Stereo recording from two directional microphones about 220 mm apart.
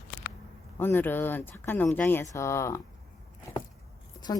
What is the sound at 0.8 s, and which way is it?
Speech, 10° left (ahead or behind).